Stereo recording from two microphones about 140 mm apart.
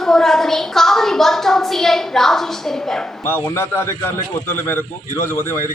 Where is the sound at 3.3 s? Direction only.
15° left (ahead or behind).